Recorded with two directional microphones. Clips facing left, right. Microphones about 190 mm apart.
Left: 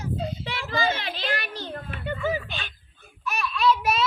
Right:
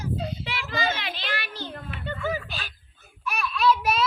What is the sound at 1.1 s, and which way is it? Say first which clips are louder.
Speech: left 3 dB; 45° left (ahead or behind).